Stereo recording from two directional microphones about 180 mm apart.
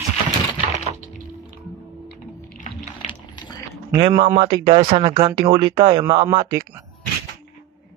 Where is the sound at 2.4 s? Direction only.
45° left (ahead or behind).